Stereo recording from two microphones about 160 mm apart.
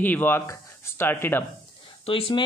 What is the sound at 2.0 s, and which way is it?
Speech, 35° left (ahead or behind).